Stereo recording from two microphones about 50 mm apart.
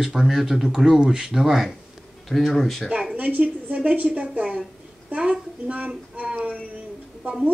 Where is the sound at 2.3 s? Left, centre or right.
Centre.